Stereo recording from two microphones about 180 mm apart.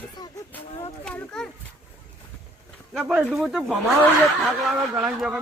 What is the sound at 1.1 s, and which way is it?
Speech, 5° left (ahead or behind).